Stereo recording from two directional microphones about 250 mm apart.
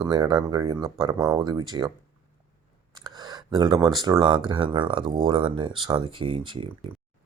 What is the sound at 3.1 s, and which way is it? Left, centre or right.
Speech, centre.